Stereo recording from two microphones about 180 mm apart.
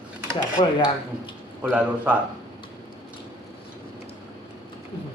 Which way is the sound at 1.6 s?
5° right (ahead or behind).